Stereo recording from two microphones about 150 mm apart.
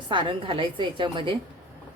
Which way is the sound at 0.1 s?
35° right (ahead or behind).